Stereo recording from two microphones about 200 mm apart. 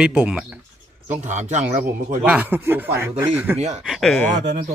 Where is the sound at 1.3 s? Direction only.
40° right (ahead or behind).